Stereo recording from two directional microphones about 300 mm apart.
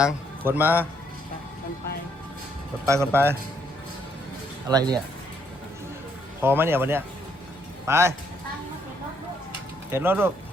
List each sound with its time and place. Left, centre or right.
0.0 s a man's voice: centre
2.8 s speech: centre
4.7 s speech: centre
6.4 s speech: centre
9.9 s speech: centre